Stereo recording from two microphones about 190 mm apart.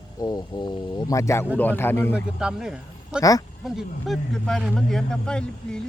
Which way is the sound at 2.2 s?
5° right (ahead or behind).